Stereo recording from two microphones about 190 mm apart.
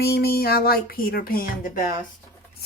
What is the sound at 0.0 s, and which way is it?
Speech, 55° left (ahead or behind).